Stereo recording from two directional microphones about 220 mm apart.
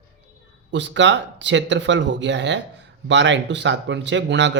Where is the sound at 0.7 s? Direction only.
55° right (ahead or behind).